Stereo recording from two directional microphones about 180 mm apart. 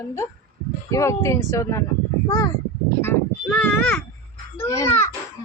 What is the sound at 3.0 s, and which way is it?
A woman's voice, 10° left (ahead or behind).